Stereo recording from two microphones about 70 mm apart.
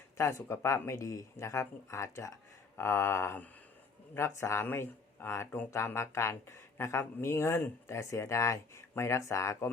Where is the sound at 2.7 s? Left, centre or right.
Left.